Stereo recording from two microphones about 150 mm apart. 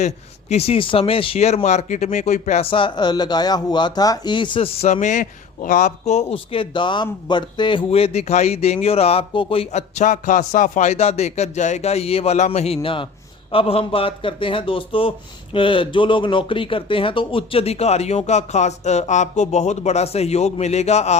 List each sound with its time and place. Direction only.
0.0 s a man's voice: 45° left (ahead or behind)